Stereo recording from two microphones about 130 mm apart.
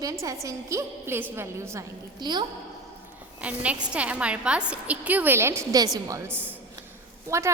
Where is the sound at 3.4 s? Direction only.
10° right (ahead or behind).